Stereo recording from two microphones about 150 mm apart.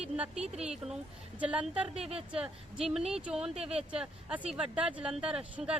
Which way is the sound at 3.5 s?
40° right (ahead or behind).